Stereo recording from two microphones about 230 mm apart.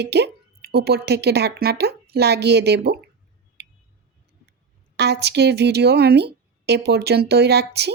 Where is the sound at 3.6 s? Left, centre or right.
Right.